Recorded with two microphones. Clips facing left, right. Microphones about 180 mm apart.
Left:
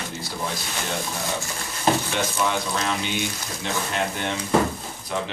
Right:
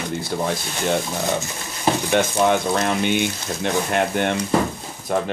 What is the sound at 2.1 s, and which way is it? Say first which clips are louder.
Speech: right 7 dB; 55° right (ahead or behind).